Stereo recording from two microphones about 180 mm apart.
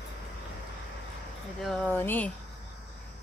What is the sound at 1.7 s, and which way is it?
Speech, 10° left (ahead or behind).